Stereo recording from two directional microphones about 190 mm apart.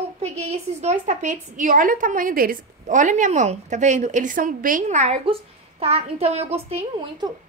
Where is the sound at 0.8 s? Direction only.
40° right (ahead or behind).